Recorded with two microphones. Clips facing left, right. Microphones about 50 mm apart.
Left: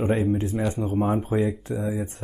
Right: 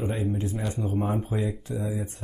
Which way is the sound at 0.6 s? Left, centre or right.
Centre.